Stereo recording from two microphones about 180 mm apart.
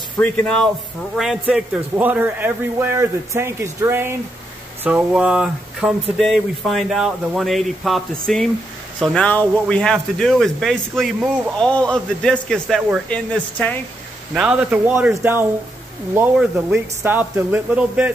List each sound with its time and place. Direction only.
0.2 s a man's voice: 5° left (ahead or behind)
14.3 s a man's voice: 5° right (ahead or behind)